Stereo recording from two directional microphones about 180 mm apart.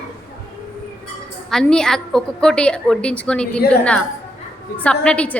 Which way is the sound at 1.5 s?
5° left (ahead or behind).